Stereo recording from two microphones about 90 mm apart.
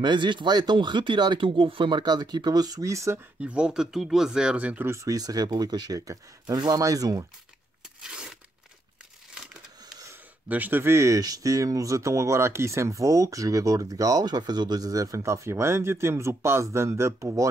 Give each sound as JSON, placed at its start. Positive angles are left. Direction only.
{"t": 0.0, "sound": "speech", "side_deg": -60}
{"t": 3.3, "sound": "speech", "side_deg": -10}
{"t": 4.8, "sound": "speech", "side_deg": -30}
{"t": 5.1, "sound": "speech", "side_deg": -45}
{"t": 8.0, "sound": "tearing", "side_deg": -5}
{"t": 10.5, "sound": "speech", "side_deg": -20}